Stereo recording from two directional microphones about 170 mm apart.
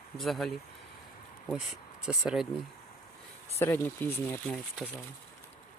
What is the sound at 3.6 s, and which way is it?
Speech, 15° left (ahead or behind).